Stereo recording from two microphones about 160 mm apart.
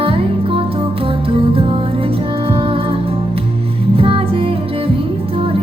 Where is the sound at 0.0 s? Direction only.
35° right (ahead or behind).